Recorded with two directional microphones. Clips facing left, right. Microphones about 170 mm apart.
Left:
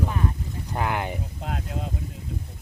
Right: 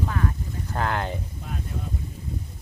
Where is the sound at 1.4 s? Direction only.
75° left (ahead or behind).